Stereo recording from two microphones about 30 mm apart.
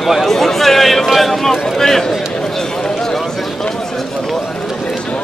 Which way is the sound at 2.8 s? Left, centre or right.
Centre.